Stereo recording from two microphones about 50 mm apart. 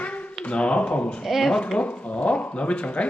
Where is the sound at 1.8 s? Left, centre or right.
Left.